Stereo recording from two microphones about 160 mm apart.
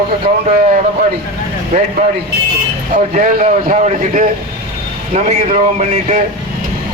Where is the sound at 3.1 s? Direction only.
50° right (ahead or behind).